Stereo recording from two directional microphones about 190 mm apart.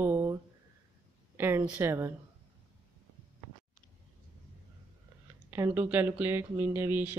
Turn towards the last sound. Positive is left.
turn(degrees=-10)  # may be behind; listen again after turning